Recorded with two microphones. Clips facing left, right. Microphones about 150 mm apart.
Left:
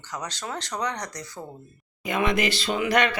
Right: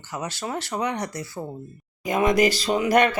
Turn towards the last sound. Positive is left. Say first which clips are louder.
# right 4 dB
turn(degrees=-45)  # may be behind; listen again after turning